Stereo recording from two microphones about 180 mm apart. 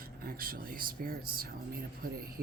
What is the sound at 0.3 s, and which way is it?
Speech, 55° right (ahead or behind).